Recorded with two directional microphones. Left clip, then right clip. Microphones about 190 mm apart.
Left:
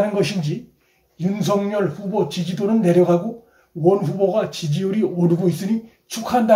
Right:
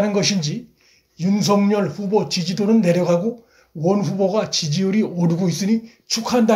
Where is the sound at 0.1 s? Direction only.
35° right (ahead or behind).